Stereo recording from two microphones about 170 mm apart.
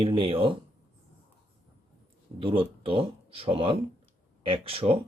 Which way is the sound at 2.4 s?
30° right (ahead or behind).